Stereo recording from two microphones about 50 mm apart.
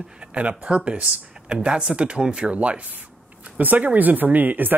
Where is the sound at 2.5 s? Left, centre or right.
Right.